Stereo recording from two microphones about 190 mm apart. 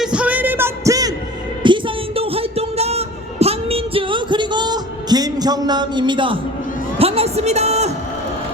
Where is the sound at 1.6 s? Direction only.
25° right (ahead or behind).